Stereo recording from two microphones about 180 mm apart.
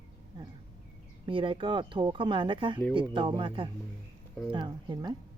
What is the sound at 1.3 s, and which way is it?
Speech, 30° right (ahead or behind).